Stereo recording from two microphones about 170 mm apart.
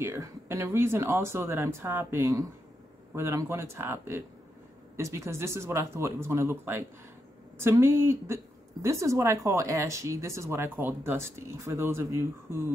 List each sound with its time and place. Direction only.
0.0 s speech: 15° right (ahead or behind)